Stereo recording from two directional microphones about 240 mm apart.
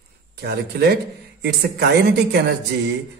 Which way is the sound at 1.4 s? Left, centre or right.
Right.